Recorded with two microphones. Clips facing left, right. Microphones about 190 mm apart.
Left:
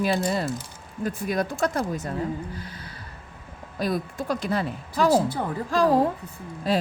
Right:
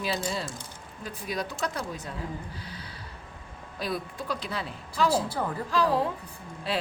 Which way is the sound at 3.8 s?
45° left (ahead or behind).